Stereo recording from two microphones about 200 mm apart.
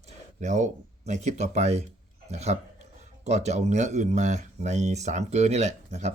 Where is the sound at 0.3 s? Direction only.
35° right (ahead or behind).